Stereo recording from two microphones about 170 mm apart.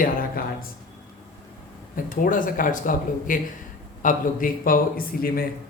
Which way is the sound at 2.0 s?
55° left (ahead or behind).